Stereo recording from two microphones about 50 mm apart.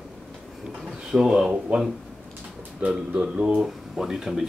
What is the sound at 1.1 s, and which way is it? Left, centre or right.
Speech, centre.